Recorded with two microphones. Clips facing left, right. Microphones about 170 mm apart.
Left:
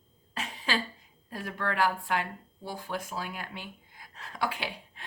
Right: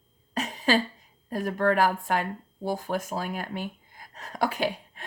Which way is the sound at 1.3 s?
45° right (ahead or behind).